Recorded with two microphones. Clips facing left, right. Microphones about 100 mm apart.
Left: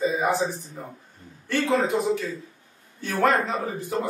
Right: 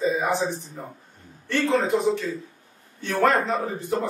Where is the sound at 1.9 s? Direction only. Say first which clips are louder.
Right 2 dB; centre (ahead or behind).